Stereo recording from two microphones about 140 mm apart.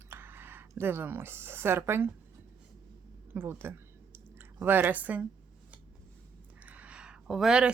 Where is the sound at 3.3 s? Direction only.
15° right (ahead or behind).